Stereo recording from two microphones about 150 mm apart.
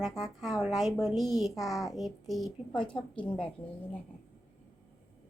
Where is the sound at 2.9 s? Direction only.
10° left (ahead or behind).